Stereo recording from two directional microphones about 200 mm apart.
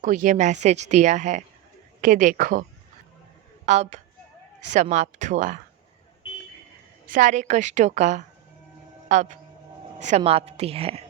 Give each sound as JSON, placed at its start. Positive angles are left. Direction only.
{"t": 0.0, "sound": "a woman's voice", "side_deg": -40}
{"t": 3.7, "sound": "a woman's voice", "side_deg": -35}
{"t": 7.1, "sound": "a woman's voice", "side_deg": -40}